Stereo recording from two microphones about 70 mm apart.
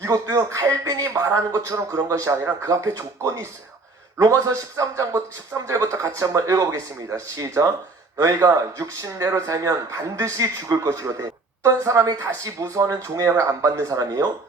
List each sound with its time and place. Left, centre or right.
0.0 s speech: right